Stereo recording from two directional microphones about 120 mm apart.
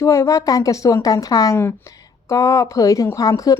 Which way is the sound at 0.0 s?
25° left (ahead or behind).